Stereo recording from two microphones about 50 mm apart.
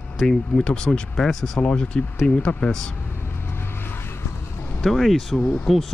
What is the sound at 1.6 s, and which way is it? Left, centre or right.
Speech, left.